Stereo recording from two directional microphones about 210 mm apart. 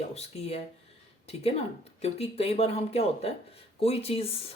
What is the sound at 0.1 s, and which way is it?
Speech, 30° left (ahead or behind).